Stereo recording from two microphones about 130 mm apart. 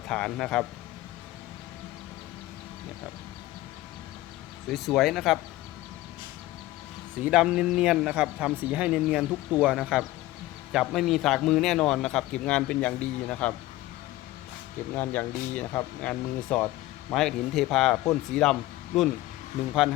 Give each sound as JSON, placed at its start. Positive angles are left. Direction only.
{"t": 0.1, "sound": "speech", "side_deg": 5}
{"t": 4.7, "sound": "speech", "side_deg": 0}
{"t": 7.2, "sound": "speech", "side_deg": -5}
{"t": 14.9, "sound": "speech", "side_deg": 15}